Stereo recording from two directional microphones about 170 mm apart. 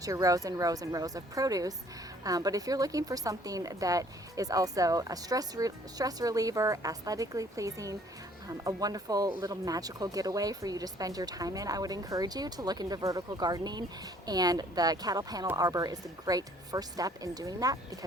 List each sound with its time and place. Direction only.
0.0 s a woman's voice: 20° right (ahead or behind)